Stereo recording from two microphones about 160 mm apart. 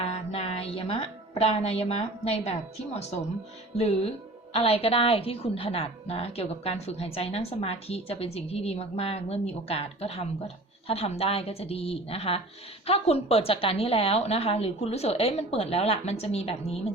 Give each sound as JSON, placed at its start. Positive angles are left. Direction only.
{"t": 0.0, "sound": "a woman's voice", "side_deg": 40}